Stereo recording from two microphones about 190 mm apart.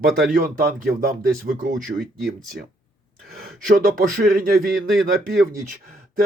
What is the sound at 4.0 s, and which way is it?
Speech, 50° right (ahead or behind).